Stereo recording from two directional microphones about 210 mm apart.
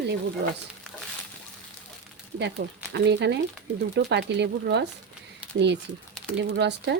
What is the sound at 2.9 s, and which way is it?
Speech, 55° right (ahead or behind).